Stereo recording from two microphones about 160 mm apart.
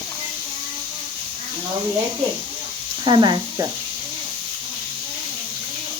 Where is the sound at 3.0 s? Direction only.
25° right (ahead or behind).